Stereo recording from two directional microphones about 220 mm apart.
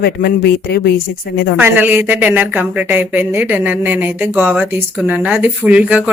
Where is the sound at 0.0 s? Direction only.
45° left (ahead or behind).